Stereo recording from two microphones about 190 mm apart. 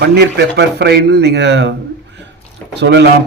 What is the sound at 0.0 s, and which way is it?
A man's voice, 60° right (ahead or behind).